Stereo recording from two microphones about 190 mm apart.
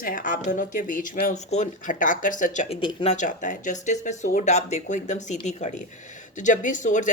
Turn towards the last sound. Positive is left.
turn(degrees=40)  # may be behind; listen again after turning